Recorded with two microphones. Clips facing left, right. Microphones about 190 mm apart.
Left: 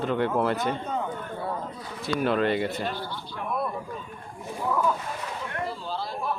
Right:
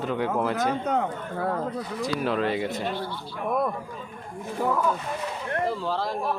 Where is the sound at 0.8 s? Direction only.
85° right.